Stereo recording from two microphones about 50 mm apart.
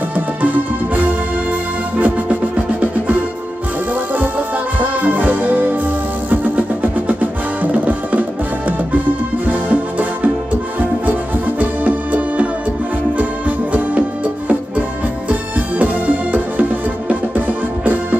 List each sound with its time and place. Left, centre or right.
0.1 s music: right
4.7 s music: right